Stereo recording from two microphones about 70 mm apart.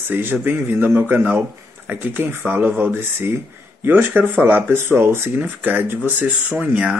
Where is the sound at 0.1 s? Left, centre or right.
Right.